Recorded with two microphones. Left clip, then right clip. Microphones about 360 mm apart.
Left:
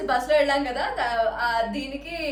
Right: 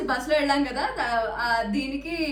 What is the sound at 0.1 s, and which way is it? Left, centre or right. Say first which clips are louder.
Speech: left 4 dB; left.